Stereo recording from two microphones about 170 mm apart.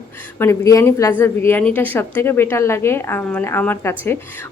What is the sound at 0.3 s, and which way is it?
Speech, 15° left (ahead or behind).